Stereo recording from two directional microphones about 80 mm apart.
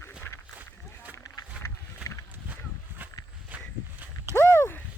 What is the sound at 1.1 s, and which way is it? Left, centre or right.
Run, left.